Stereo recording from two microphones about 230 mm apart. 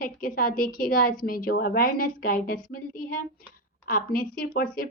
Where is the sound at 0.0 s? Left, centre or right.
Left.